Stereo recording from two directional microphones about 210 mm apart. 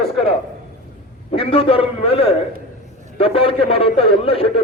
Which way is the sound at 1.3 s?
25° left (ahead or behind).